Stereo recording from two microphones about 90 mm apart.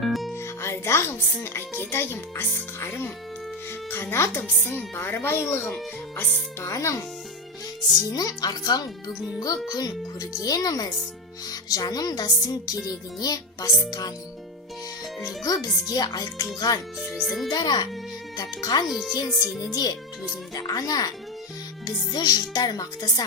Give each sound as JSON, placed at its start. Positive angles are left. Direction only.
{"t": 0.0, "sound": "music", "side_deg": 0}
{"t": 0.3, "sound": "music", "side_deg": 30}
{"t": 1.5, "sound": "speech", "side_deg": 25}
{"t": 8.1, "sound": "music", "side_deg": 45}
{"t": 15.4, "sound": "music", "side_deg": 45}
{"t": 17.2, "sound": "speech", "side_deg": 0}
{"t": 17.5, "sound": "music", "side_deg": 55}
{"t": 18.9, "sound": "speech", "side_deg": -5}
{"t": 19.7, "sound": "music", "side_deg": 45}